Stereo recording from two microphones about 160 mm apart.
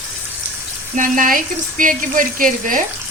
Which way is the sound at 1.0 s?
55° right (ahead or behind).